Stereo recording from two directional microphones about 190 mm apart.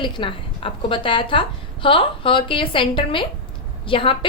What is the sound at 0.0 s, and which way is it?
A woman's voice, 25° left (ahead or behind).